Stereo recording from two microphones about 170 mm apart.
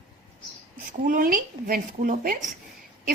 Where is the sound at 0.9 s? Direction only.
50° right (ahead or behind).